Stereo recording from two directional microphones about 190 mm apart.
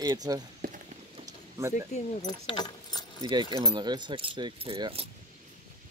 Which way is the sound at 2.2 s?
25° left (ahead or behind).